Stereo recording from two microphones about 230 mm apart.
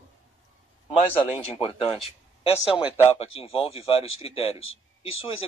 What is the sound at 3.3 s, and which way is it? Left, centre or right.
Speech, left.